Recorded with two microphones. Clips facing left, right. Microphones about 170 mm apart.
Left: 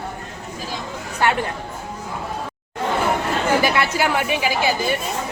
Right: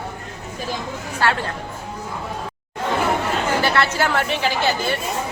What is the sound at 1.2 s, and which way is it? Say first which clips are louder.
Speech: left 1 dB; 20° left (ahead or behind).